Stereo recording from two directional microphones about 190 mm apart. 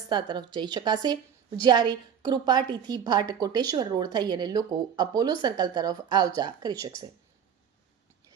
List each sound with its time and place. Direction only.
0.1 s a woman's voice: 25° right (ahead or behind)